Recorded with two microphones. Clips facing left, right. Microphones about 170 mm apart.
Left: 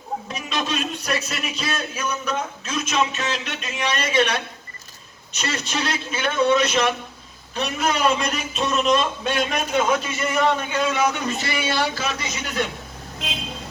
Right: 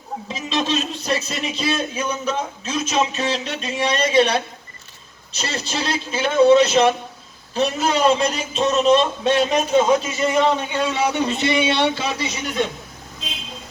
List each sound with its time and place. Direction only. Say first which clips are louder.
0.3 s a man's voice: right 6 dB; 25° right (ahead or behind)